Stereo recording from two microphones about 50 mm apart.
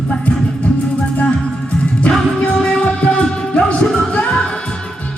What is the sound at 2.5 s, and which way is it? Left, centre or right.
Music, centre.